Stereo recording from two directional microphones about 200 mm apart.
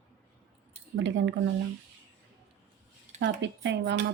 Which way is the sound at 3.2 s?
60° right (ahead or behind).